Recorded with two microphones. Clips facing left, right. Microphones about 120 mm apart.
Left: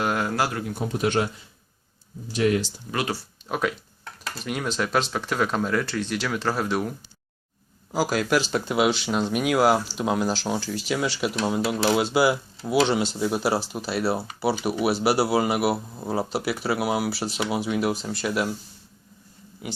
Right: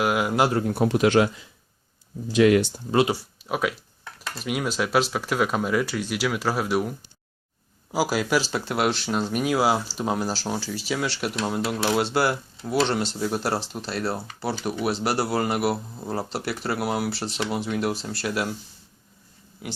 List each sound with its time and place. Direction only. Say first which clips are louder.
0.0 s speech: right 3 dB; 10° right (ahead or behind)
0.7 s speech: right 5 dB; 70° right (ahead or behind); by 1.3 s 90° right
2.4 s speech: right 5 dB; 90° right
2.9 s speech: right 7 dB; 25° right (ahead or behind)
3.5 s speech: even; 5° right (ahead or behind)
7.9 s speech: even; 5° right (ahead or behind)